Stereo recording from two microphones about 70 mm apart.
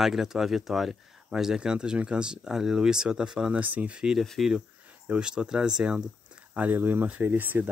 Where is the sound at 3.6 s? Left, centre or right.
Right.